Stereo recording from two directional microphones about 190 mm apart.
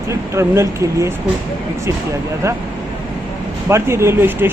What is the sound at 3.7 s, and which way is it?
Speech, 15° right (ahead or behind).